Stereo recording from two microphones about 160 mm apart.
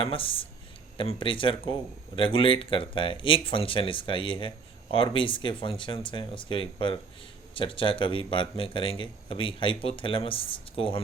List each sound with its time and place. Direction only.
0.0 s speech: 35° left (ahead or behind)